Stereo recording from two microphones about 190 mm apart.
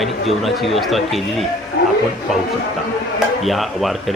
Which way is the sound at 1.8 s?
60° left (ahead or behind).